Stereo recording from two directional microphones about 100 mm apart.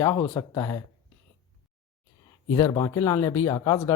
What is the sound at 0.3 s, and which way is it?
Speech, 30° left (ahead or behind).